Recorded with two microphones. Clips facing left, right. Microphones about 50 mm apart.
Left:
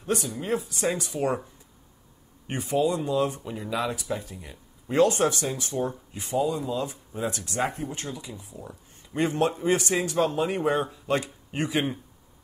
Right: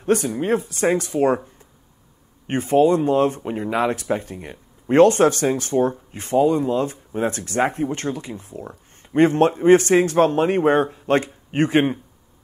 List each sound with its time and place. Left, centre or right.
0.0 s speech: right
2.4 s speech: right